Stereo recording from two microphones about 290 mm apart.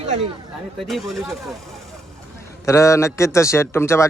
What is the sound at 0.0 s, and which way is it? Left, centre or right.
Chatter, right.